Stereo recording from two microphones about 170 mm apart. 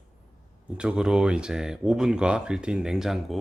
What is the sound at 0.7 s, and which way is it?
Speech, 5° right (ahead or behind).